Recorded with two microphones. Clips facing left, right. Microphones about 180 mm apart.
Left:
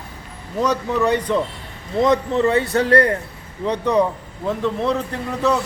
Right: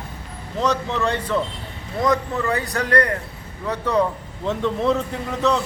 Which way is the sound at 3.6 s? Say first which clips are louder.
Left 3 dB; 15° left (ahead or behind).